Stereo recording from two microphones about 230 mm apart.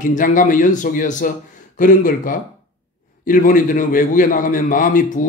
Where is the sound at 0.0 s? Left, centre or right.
Left.